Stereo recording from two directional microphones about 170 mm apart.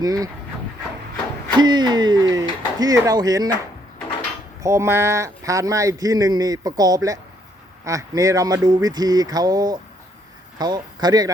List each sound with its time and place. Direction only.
0.0 s speech: 20° right (ahead or behind)
1.5 s speech: 25° right (ahead or behind)
4.6 s speech: 15° right (ahead or behind)